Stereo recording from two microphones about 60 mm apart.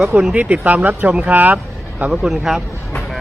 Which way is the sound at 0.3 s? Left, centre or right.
Right.